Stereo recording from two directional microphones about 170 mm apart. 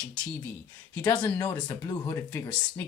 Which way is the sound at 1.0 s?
20° left (ahead or behind).